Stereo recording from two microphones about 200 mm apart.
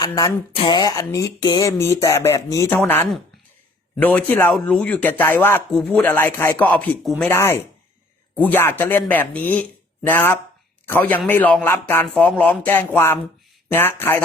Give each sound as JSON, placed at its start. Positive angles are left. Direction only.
{"t": 0.0, "sound": "speech", "side_deg": 15}
{"t": 7.3, "sound": "speech", "side_deg": 15}